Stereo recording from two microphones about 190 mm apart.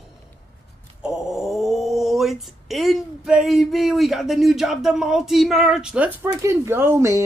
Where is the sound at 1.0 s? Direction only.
Centre (ahead or behind).